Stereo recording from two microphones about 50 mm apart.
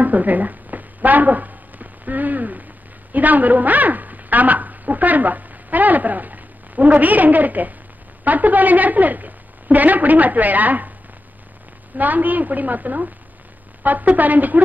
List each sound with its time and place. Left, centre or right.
0.0 s a sound: right
3.1 s a woman's voice: right
12.0 s a woman's voice: right